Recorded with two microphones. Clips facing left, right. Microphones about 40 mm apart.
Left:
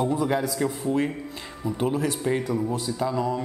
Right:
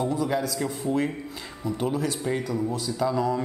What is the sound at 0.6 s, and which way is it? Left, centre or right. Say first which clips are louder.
Speech: left 2 dB; centre.